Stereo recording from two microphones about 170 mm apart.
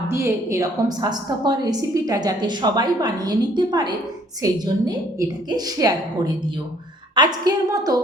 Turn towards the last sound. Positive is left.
turn(degrees=-20)  # may be behind; listen again after turning